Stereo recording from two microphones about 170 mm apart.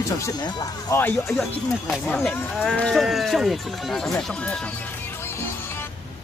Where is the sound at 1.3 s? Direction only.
Centre (ahead or behind).